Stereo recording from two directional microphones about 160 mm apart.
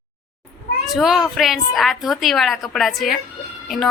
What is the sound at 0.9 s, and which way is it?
A woman's voice, centre (ahead or behind).